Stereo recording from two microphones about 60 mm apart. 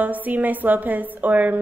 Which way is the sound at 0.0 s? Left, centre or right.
Right.